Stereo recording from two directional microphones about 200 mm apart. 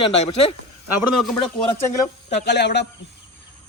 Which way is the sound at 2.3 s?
55° left (ahead or behind).